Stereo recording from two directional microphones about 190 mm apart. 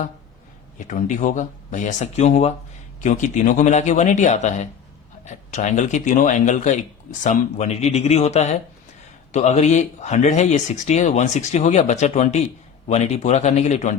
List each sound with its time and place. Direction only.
0.8 s speech: 40° left (ahead or behind)